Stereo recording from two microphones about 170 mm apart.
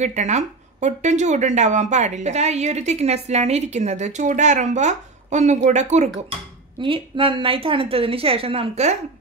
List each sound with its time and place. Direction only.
0.0 s speech: 45° right (ahead or behind)
6.8 s a woman's voice: 30° right (ahead or behind)